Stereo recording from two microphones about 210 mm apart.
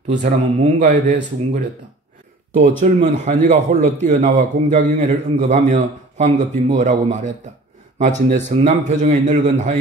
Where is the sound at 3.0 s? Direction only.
35° right (ahead or behind).